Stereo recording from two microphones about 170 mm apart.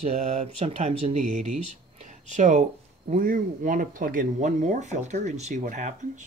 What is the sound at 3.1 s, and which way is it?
Speech, 55° right (ahead or behind).